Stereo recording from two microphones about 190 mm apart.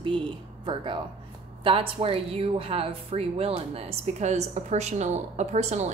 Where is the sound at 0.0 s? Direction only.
25° right (ahead or behind).